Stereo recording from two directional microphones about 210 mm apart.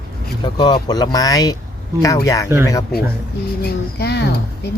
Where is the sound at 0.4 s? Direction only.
20° left (ahead or behind).